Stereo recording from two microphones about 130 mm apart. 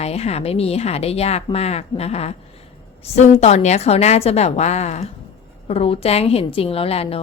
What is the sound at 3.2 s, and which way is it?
A woman's voice, 65° left (ahead or behind).